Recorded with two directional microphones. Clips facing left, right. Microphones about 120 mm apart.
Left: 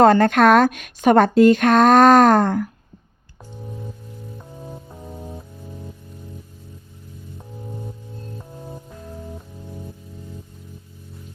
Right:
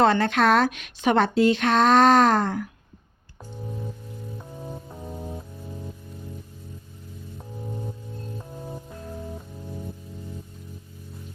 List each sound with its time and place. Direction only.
0.0 s a woman's voice: 45° left (ahead or behind)
3.7 s singing bowl: centre (ahead or behind)
4.4 s music: centre (ahead or behind)
7.3 s music: centre (ahead or behind)